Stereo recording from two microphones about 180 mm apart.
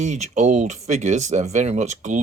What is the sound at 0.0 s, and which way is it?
Speech, 40° right (ahead or behind).